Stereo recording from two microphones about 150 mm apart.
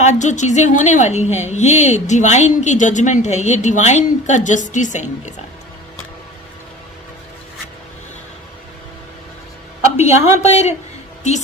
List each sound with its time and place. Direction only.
0.0 s a woman's voice: 50° left (ahead or behind)
10.1 s a woman's voice: 20° right (ahead or behind)
10.3 s a woman's voice: 50° left (ahead or behind)